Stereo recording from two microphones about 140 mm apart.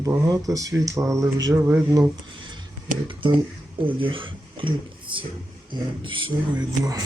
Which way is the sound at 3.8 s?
40° right (ahead or behind).